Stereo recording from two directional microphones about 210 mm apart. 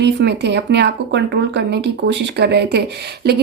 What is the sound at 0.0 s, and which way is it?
A woman's voice, 55° right (ahead or behind).